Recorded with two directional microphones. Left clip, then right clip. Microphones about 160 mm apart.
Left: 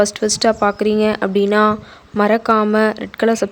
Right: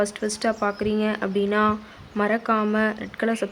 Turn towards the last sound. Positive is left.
turn(degrees=40)  # may be behind; listen again after turning